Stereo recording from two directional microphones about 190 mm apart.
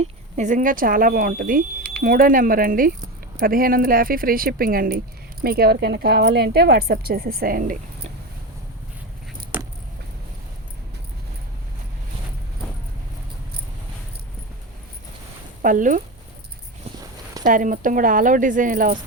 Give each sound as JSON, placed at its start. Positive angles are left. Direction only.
{"t": 0.0, "sound": "speech", "side_deg": -40}
{"t": 9.5, "sound": "vehicle", "side_deg": -10}
{"t": 15.6, "sound": "speech", "side_deg": -45}
{"t": 16.9, "sound": "walk", "side_deg": -35}
{"t": 17.4, "sound": "speech", "side_deg": -45}